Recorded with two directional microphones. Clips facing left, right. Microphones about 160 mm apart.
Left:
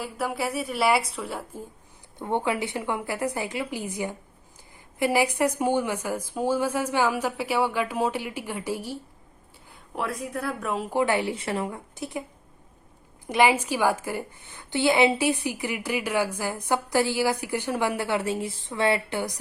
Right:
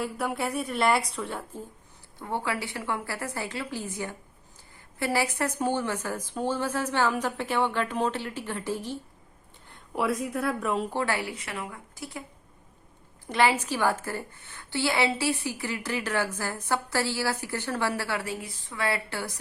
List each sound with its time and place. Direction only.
0.0 s a woman's voice: centre (ahead or behind)
2.1 s a woman's voice: 20° left (ahead or behind); by 10.9 s centre (ahead or behind)
10.9 s a woman's voice: 20° left (ahead or behind)
13.2 s a woman's voice: 15° left (ahead or behind)